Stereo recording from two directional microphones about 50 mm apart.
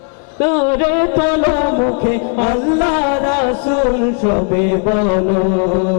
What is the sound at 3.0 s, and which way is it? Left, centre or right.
Music, left.